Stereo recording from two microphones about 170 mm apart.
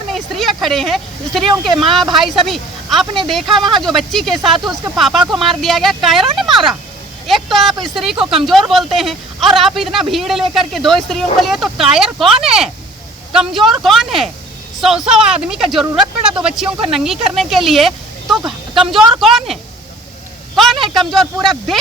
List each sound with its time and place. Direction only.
0.1 s a sound: centre (ahead or behind)
1.8 s speech: centre (ahead or behind)
18.4 s speech: 30° right (ahead or behind)
19.2 s speech: centre (ahead or behind)
20.8 s speech: centre (ahead or behind)